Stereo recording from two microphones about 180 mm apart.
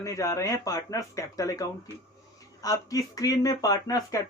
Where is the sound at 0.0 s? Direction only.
15° left (ahead or behind).